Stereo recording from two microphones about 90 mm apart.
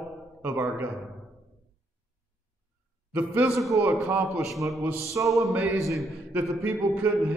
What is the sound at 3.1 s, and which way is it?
Speech, 20° right (ahead or behind).